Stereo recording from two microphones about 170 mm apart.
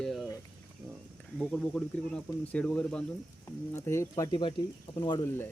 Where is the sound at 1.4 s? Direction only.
5° left (ahead or behind).